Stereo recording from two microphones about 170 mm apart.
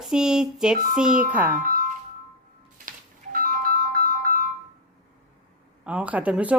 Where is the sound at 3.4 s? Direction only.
55° right (ahead or behind).